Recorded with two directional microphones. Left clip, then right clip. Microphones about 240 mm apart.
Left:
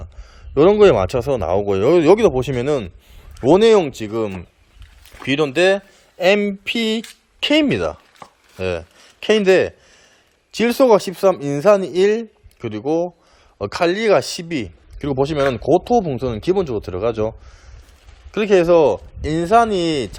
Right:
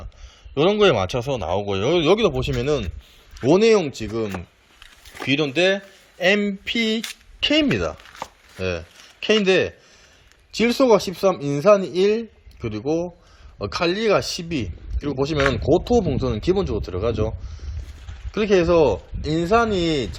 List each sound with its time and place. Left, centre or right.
0.5 s speech: centre
1.5 s speech: left
2.0 s speech: centre